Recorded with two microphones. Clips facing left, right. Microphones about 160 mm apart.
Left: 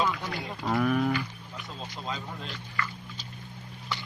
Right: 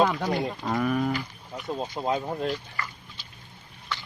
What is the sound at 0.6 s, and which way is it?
Speech, centre (ahead or behind).